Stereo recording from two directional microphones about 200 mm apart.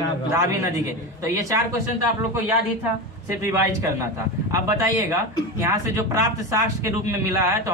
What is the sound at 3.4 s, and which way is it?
Speech, 15° right (ahead or behind).